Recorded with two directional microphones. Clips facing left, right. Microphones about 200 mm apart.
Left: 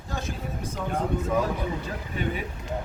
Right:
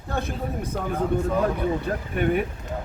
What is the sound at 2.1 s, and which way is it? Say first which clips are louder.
Speech: right 8 dB; 60° right (ahead or behind).